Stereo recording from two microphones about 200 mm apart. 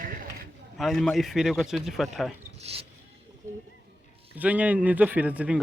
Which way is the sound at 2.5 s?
30° right (ahead or behind).